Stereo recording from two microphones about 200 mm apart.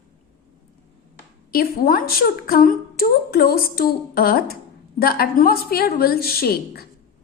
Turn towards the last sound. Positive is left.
turn(degrees=50)  # may be behind; listen again after turning